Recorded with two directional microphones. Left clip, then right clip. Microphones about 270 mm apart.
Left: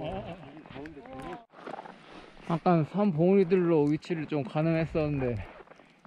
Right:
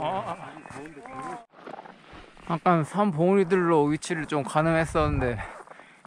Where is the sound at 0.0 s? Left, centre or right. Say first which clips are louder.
Right 8 dB; centre.